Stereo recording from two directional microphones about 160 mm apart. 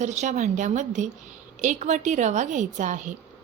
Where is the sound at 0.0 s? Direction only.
50° right (ahead or behind).